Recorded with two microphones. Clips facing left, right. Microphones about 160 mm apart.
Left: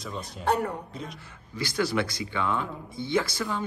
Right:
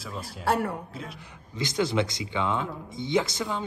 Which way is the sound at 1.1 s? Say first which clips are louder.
Even; 20° right (ahead or behind).